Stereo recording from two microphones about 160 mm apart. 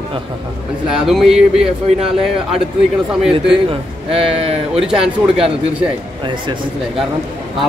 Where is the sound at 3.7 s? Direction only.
35° right (ahead or behind).